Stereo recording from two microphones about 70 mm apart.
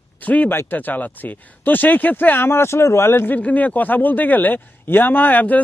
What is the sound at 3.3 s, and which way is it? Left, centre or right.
A man's voice, left.